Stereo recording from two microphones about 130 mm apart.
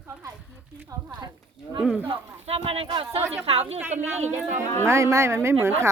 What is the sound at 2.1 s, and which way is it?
Speech, 50° right (ahead or behind).